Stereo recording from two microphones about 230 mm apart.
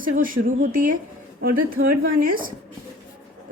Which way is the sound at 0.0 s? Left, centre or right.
Right.